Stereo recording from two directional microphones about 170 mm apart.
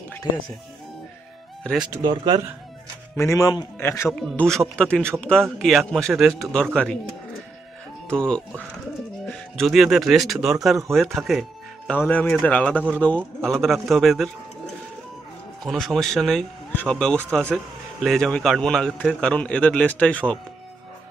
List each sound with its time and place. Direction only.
1.6 s speech: centre (ahead or behind)
2.0 s speech: 25° right (ahead or behind)
3.2 s a man's voice: 15° left (ahead or behind)
8.1 s a man's voice: 5° left (ahead or behind)
15.6 s a man's voice: centre (ahead or behind)